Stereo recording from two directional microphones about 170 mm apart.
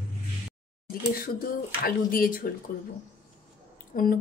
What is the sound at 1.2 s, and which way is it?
Speech, 55° left (ahead or behind).